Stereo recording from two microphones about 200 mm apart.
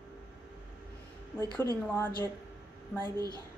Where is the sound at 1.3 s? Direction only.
20° right (ahead or behind).